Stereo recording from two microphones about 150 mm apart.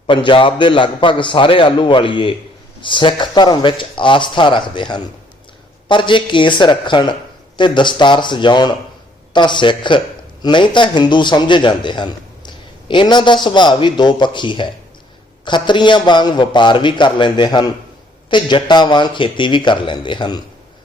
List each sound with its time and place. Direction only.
0.1 s speech: 35° left (ahead or behind)